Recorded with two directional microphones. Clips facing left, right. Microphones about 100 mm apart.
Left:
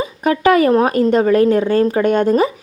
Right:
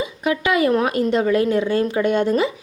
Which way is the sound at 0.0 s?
45° left (ahead or behind).